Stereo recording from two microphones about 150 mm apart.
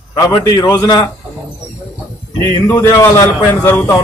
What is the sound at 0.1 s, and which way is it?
A man's voice, 25° left (ahead or behind).